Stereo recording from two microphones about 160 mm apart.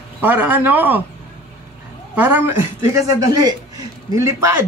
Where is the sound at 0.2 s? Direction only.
10° right (ahead or behind).